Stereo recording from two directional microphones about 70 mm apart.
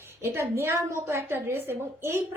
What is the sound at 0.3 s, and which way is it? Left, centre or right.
A woman's voice, right.